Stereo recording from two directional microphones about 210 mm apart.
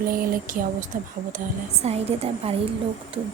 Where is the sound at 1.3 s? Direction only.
30° right (ahead or behind).